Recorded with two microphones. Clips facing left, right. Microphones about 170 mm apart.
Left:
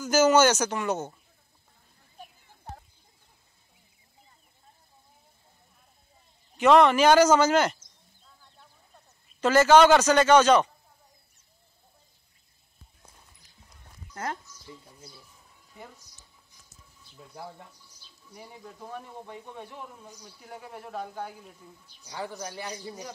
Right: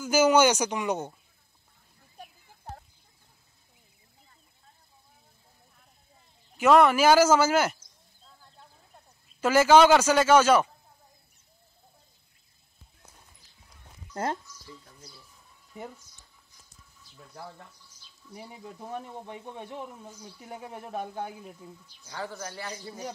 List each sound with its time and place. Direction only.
0.0 s speech: 10° right (ahead or behind)
6.5 s speech: 5° right (ahead or behind)
9.4 s speech: 10° right (ahead or behind)
14.1 s a man's voice: 30° right (ahead or behind)
17.2 s a man's voice: 15° left (ahead or behind)
18.3 s a man's voice: 20° right (ahead or behind)
22.0 s a man's voice: 15° left (ahead or behind)